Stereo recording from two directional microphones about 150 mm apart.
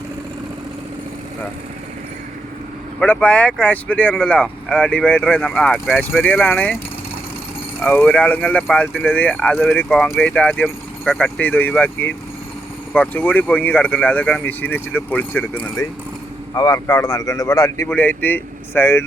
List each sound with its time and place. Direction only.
3.0 s speech: 10° left (ahead or behind)
7.9 s speech: 10° left (ahead or behind)
16.6 s a man's voice: 25° left (ahead or behind)